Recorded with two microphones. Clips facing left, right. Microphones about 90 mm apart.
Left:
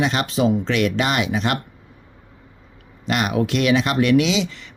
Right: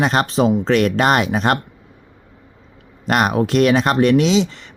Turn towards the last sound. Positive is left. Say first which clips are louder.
# right 5 dB
turn(degrees=-35)  # may be behind; listen again after turning